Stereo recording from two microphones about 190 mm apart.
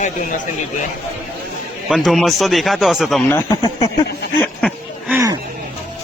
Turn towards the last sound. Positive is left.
turn(degrees=-15)  # may be behind; listen again after turning